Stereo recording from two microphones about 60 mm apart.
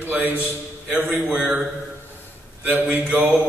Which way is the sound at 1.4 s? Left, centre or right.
Centre.